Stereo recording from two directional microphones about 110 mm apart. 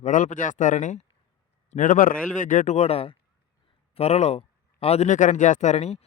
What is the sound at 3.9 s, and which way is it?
Speech, 80° left.